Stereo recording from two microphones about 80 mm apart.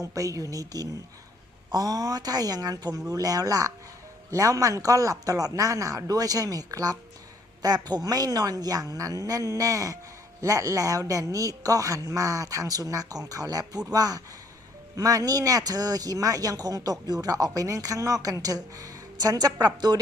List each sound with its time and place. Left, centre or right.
0.0 s speech: right